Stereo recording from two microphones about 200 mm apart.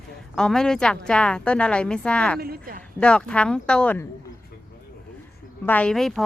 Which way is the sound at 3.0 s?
5° left (ahead or behind).